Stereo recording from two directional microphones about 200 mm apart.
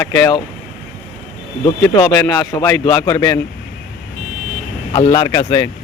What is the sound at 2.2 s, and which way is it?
Speech, 15° left (ahead or behind).